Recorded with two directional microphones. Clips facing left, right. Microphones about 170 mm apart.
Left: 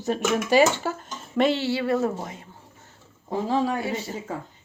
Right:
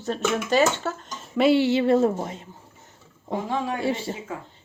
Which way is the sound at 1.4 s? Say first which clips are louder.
Right 4 dB; 10° right (ahead or behind).